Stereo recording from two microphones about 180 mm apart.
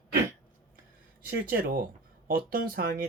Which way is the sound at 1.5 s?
50° right (ahead or behind).